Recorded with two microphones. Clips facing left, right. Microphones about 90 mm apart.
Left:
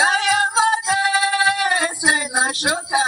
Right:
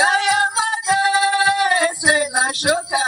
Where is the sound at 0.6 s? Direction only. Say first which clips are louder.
Left 3 dB; 25° left (ahead or behind).